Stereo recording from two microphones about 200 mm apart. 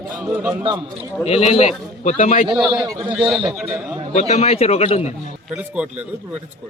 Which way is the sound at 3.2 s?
Centre (ahead or behind).